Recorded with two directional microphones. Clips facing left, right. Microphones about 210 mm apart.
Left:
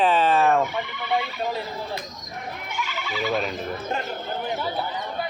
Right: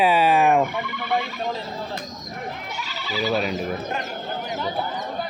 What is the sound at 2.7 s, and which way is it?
Goat, 35° right (ahead or behind).